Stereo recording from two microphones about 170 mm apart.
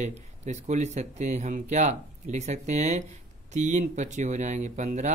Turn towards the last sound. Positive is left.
turn(degrees=-45)  # may be behind; listen again after turning